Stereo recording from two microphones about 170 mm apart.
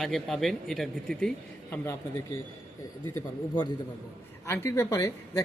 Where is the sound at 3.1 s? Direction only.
25° left (ahead or behind).